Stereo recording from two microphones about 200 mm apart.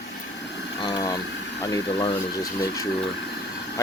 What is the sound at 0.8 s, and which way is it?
Speech, 20° left (ahead or behind).